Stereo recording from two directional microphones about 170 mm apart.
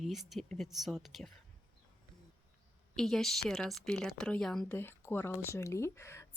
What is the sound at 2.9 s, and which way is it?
Speech, centre (ahead or behind).